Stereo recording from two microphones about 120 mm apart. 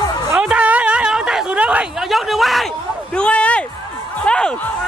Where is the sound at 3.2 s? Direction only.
10° left (ahead or behind).